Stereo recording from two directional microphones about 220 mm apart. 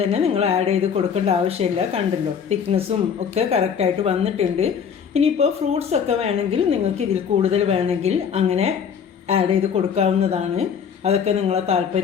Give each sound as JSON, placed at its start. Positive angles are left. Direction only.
{"t": 0.0, "sound": "a woman's voice", "side_deg": -30}